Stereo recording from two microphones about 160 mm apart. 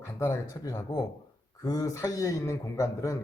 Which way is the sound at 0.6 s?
25° left (ahead or behind).